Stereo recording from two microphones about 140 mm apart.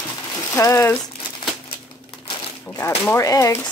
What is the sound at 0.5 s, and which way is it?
Speech, 20° left (ahead or behind).